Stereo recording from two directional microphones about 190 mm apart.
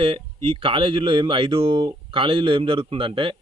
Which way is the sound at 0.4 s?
25° right (ahead or behind).